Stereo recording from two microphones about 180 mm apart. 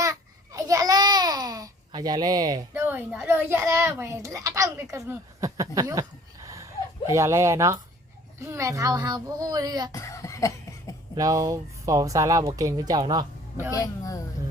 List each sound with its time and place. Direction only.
0.0 s babbling: 20° right (ahead or behind)
7.1 s speech: 15° right (ahead or behind)
9.9 s cough: 15° left (ahead or behind)
11.1 s speech: 20° right (ahead or behind)
13.7 s speech: 20° left (ahead or behind)